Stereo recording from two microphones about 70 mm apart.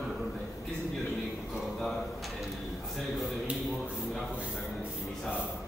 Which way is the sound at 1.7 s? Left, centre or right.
Centre.